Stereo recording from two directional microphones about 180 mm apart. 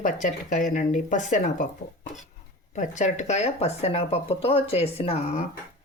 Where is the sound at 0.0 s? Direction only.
45° left (ahead or behind).